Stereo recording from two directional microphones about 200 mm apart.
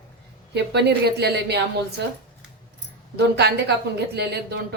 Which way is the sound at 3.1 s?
55° right (ahead or behind).